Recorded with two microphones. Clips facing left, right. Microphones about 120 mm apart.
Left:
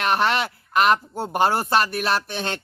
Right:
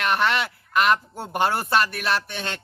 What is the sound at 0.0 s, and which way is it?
Speech, 35° left (ahead or behind).